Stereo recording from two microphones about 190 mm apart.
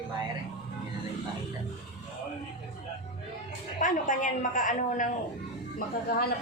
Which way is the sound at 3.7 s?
45° left (ahead or behind).